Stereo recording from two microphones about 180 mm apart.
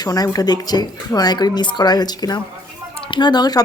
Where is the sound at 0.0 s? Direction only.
20° left (ahead or behind).